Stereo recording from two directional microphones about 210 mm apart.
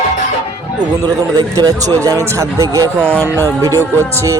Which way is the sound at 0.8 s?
20° right (ahead or behind).